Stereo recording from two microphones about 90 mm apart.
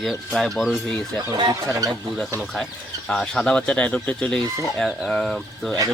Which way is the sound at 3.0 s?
5° left (ahead or behind).